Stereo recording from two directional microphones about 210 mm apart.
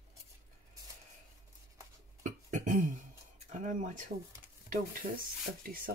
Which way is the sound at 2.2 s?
35° right (ahead or behind).